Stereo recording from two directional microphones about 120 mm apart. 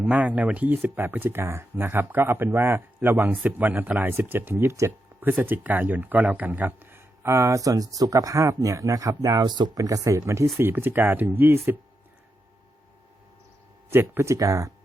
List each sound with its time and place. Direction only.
0.0 s speech: 10° right (ahead or behind)
13.9 s speech: 20° right (ahead or behind)